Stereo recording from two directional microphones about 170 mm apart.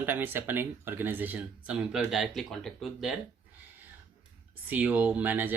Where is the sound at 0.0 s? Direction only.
10° right (ahead or behind).